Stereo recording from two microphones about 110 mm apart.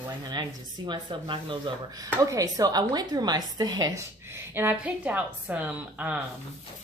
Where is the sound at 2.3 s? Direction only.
30° right (ahead or behind).